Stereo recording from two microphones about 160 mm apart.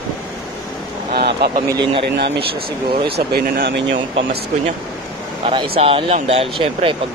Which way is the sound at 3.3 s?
75° right (ahead or behind).